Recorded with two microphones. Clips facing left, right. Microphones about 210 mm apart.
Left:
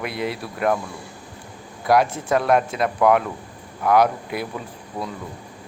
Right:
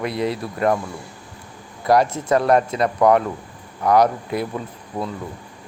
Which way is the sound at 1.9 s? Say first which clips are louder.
Right 2 dB; 5° left (ahead or behind).